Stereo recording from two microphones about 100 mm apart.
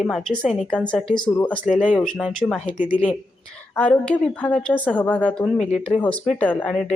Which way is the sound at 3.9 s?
10° left (ahead or behind).